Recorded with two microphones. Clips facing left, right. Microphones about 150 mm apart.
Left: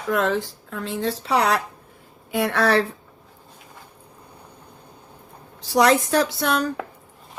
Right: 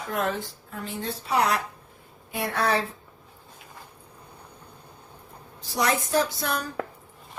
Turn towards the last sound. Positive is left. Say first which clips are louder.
# left 4 dB
turn(degrees=70)  # may be behind; listen again after turning